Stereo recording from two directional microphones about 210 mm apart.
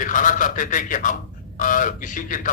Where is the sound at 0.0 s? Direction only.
40° left (ahead or behind).